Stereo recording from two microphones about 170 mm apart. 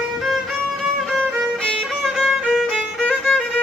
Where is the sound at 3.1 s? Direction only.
5° left (ahead or behind).